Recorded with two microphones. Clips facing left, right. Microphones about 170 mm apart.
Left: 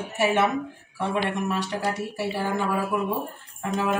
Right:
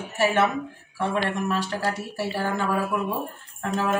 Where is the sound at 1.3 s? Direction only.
15° left (ahead or behind).